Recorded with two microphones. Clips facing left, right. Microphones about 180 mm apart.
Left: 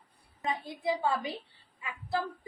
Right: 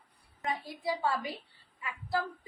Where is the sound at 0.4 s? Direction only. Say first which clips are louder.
Left 2 dB; 20° left (ahead or behind).